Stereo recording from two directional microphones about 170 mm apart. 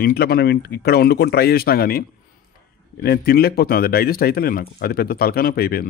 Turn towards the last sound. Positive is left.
turn(degrees=65)  # may be behind; listen again after turning